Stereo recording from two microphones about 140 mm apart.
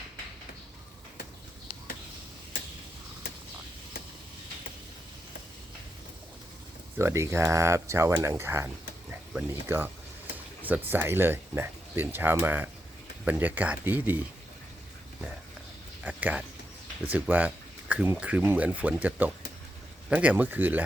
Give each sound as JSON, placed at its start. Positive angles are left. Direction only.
{"t": 7.0, "sound": "speech", "side_deg": -20}
{"t": 16.0, "sound": "speech", "side_deg": -10}